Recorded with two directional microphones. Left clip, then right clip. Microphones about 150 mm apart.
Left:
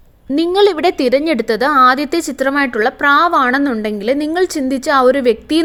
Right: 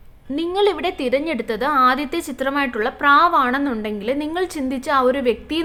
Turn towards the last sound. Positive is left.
turn(degrees=45)  # may be behind; listen again after turning